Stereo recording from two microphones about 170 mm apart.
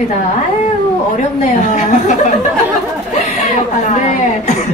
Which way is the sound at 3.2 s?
45° left (ahead or behind).